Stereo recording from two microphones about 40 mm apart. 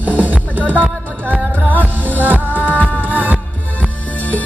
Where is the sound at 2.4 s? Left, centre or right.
Left.